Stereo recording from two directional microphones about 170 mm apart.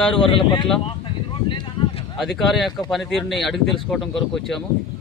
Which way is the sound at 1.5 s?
30° left (ahead or behind).